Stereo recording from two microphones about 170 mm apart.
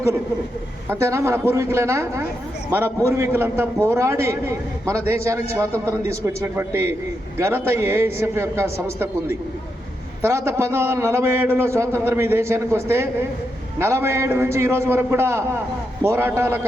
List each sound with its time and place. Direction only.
0.9 s a man's voice: 15° right (ahead or behind)
10.2 s a man's voice: 15° right (ahead or behind)